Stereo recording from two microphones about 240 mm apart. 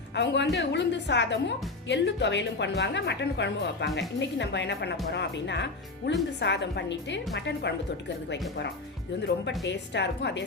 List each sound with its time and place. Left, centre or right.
0.2 s a woman's voice: left